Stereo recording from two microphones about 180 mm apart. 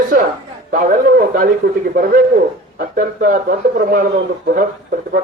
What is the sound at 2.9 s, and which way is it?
Speech, 50° right (ahead or behind).